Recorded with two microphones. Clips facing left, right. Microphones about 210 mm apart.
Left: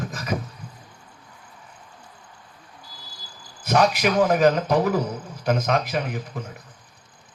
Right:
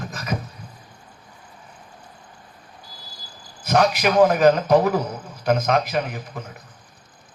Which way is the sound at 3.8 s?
50° right (ahead or behind).